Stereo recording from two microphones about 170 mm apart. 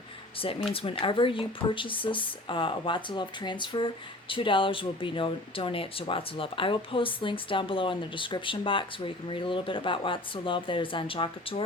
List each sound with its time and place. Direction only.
0.7 s speech: 35° left (ahead or behind)